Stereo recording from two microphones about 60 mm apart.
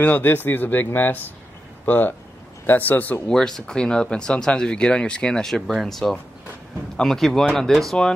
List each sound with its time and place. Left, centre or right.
0.0 s a man's voice: left
3.3 s speech: centre
5.5 s speech: centre